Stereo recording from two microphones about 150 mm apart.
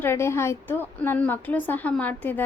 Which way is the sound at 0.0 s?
15° left (ahead or behind).